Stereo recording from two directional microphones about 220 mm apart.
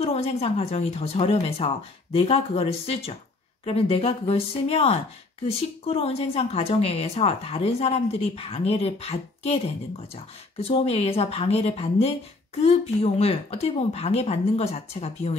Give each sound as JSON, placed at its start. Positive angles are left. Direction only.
{"t": 0.0, "sound": "a woman's voice", "side_deg": 30}